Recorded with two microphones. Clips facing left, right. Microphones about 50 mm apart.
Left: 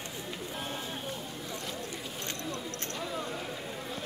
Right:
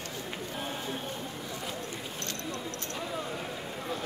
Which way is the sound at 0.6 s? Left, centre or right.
Centre.